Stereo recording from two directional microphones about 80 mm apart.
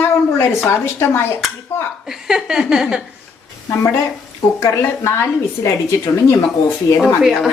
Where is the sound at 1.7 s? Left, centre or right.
Left.